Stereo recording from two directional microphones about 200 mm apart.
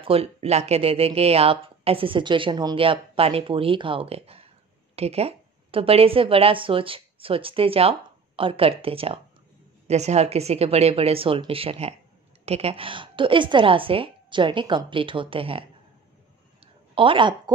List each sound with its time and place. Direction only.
0.0 s a woman's voice: 30° right (ahead or behind)
16.9 s a woman's voice: 25° right (ahead or behind)